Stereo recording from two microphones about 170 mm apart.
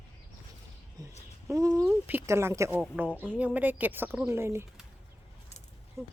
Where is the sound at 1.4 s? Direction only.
15° right (ahead or behind).